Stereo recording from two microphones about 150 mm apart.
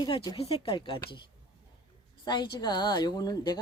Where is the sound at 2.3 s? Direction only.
30° left (ahead or behind).